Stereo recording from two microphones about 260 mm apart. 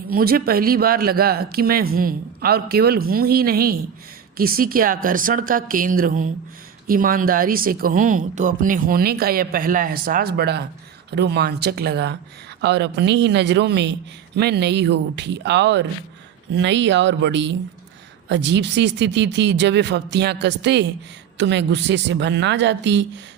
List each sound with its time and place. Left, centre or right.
0.1 s speech: right